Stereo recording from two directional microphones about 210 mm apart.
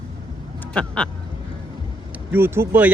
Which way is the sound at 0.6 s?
5° left (ahead or behind).